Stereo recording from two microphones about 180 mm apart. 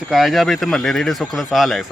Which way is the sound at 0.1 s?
Centre (ahead or behind).